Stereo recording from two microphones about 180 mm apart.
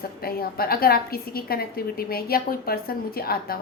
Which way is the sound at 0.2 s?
55° left (ahead or behind).